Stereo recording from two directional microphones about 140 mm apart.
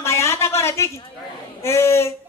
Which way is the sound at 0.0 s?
20° left (ahead or behind).